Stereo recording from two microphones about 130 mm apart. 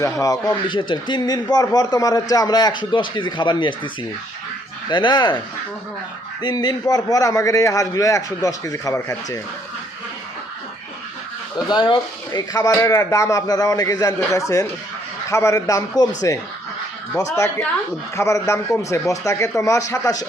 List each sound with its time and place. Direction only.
0.0 s a man's voice: 25° left (ahead or behind)
0.7 s a man's voice: 40° left (ahead or behind)
4.9 s a man's voice: 35° left (ahead or behind)
6.4 s a man's voice: 30° left (ahead or behind)
11.7 s a man's voice: 35° left (ahead or behind)